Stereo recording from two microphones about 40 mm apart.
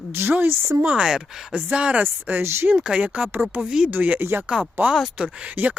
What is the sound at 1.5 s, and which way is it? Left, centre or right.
Speech, right.